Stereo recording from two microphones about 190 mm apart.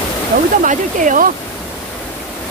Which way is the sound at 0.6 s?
45° right (ahead or behind).